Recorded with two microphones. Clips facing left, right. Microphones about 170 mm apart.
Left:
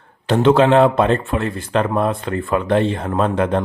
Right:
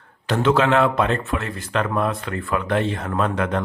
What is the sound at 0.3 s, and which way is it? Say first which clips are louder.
Speech: left 5 dB; 30° left (ahead or behind).